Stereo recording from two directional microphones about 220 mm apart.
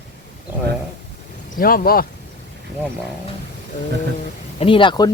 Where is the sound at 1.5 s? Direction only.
40° left (ahead or behind).